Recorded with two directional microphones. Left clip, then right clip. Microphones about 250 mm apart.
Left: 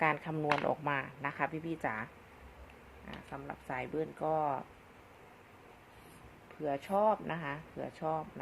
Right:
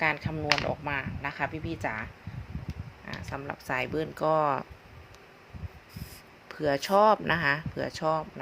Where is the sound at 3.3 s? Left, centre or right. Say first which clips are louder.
Right 8 dB; right.